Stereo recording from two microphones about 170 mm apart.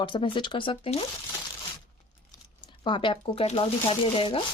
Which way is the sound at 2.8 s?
30° left (ahead or behind).